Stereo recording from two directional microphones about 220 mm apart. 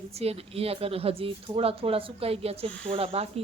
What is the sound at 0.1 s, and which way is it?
A woman's voice, 30° right (ahead or behind).